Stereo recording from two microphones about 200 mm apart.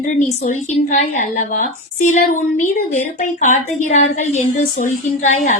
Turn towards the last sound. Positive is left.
turn(degrees=35)  # may be behind; listen again after turning